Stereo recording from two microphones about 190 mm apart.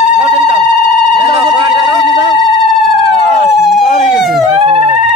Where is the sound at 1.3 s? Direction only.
20° right (ahead or behind).